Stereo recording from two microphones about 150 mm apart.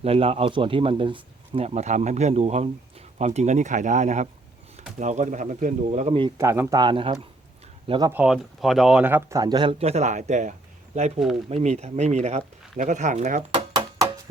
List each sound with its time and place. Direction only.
0.0 s speech: 40° right (ahead or behind)
6.3 s speech: 20° right (ahead or behind)
8.1 s speech: 5° right (ahead or behind)
9.4 s speech: 30° right (ahead or behind); by 13.4 s 60° right (ahead or behind)